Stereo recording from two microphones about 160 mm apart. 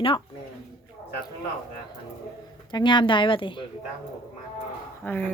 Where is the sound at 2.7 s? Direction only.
30° left (ahead or behind).